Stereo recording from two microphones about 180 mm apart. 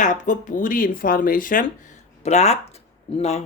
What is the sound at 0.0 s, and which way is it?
Speech, 45° left (ahead or behind).